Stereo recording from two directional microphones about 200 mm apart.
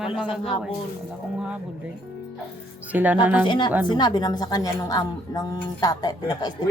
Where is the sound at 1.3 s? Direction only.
5° right (ahead or behind).